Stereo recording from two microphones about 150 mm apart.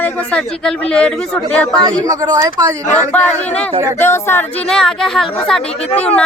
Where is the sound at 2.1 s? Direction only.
25° right (ahead or behind).